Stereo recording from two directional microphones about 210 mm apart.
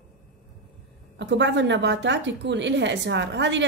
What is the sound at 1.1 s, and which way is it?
A woman's voice, 55° right (ahead or behind).